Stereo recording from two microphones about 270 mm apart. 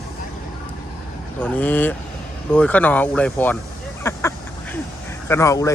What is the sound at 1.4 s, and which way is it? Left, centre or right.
Speech, centre.